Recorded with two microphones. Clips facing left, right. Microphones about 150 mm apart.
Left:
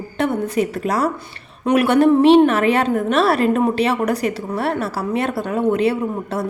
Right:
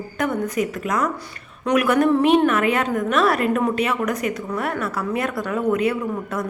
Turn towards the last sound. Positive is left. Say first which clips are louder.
# left 3 dB
turn(degrees=30)  # may be behind; listen again after turning